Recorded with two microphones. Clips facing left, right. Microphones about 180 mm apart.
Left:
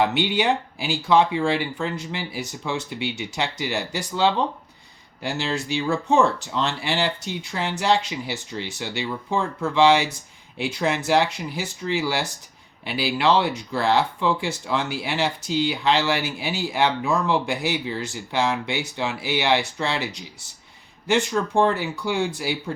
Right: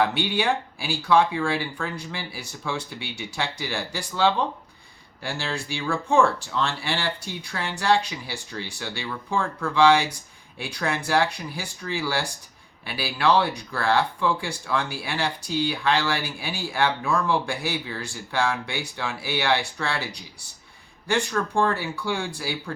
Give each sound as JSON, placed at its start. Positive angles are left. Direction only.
{"t": 0.0, "sound": "speech", "side_deg": 20}